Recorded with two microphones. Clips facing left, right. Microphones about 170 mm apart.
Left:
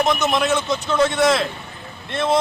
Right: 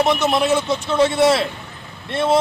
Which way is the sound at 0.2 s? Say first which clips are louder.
Right 2 dB; 30° right (ahead or behind).